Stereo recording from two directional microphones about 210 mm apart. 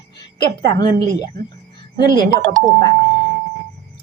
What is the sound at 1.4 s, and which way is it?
Speech, 20° left (ahead or behind).